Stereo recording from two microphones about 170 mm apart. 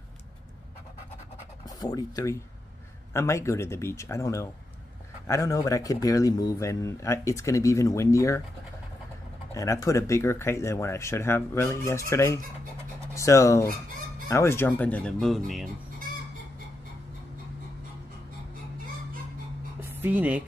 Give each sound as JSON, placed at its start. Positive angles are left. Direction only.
{"t": 1.8, "sound": "speech", "side_deg": 20}
{"t": 9.5, "sound": "speech", "side_deg": 20}
{"t": 19.8, "sound": "a woman's voice", "side_deg": -10}